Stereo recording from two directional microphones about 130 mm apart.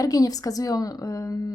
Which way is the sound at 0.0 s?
25° left (ahead or behind).